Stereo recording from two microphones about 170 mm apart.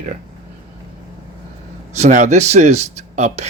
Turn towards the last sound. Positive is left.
turn(degrees=-40)  # may be behind; listen again after turning